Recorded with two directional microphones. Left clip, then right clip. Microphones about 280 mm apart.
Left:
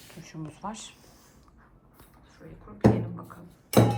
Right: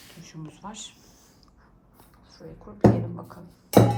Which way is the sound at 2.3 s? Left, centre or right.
Centre.